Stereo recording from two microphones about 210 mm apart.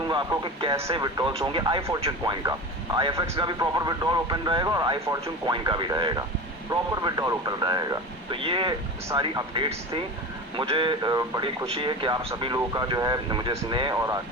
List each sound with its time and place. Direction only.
0.1 s speech: 20° right (ahead or behind)